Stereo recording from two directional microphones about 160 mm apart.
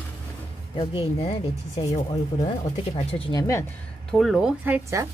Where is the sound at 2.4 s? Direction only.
40° left (ahead or behind).